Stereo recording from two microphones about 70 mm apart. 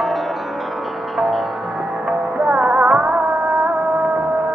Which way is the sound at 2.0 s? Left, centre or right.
Centre.